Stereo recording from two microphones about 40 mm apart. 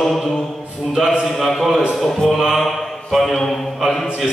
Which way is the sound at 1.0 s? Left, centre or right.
Centre.